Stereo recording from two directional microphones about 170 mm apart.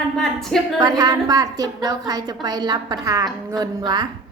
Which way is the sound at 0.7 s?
25° right (ahead or behind).